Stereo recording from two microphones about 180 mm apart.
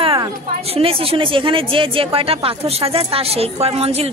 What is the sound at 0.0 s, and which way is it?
A woman's voice, 30° right (ahead or behind).